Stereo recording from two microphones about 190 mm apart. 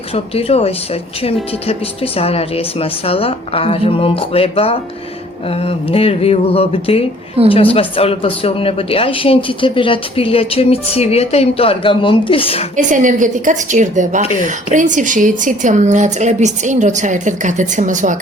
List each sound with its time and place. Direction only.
0.1 s a woman's voice: 30° left (ahead or behind)
12.7 s a woman's voice: 40° right (ahead or behind)